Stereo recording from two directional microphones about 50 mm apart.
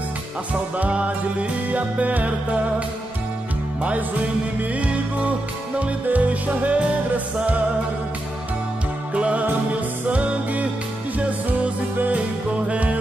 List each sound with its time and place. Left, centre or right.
0.7 s music: right
4.6 s music: right
9.1 s music: right